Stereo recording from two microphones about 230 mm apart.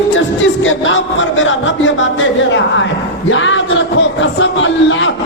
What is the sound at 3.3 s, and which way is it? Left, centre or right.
Speech, left.